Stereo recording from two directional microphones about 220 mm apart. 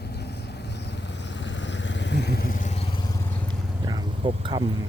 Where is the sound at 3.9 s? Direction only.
20° right (ahead or behind).